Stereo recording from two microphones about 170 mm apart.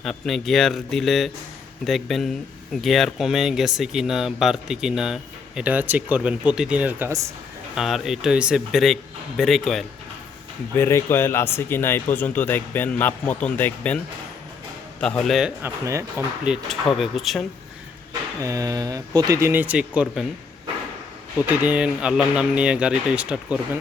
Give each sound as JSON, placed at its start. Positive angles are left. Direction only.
{"t": 0.0, "sound": "speech", "side_deg": 0}
{"t": 10.8, "sound": "speech", "side_deg": 15}
{"t": 15.0, "sound": "speech", "side_deg": 5}
{"t": 15.6, "sound": "speech", "side_deg": -15}
{"t": 18.4, "sound": "speech", "side_deg": -20}
{"t": 21.6, "sound": "speech", "side_deg": -5}